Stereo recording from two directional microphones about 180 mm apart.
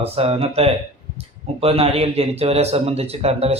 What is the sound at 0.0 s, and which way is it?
A man's voice, 30° right (ahead or behind).